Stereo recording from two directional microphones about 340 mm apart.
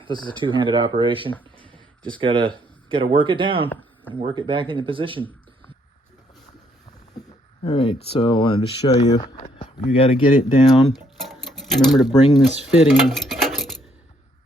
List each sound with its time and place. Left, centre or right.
0.0 s speech: centre
7.6 s speech: centre
11.3 s a sound: centre
12.4 s speech: centre